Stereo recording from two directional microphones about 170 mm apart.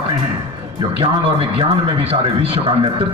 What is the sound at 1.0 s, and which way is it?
A man's voice, 30° right (ahead or behind).